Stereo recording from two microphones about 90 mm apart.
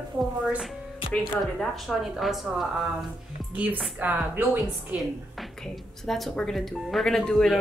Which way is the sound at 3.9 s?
20° right (ahead or behind).